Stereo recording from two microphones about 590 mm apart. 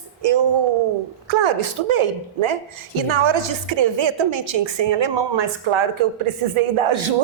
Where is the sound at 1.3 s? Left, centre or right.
Right.